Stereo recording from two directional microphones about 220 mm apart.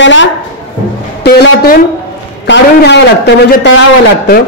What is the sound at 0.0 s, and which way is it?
Speech, 60° left (ahead or behind).